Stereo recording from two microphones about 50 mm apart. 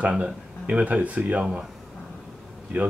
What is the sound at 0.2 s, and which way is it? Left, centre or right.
Speech, right.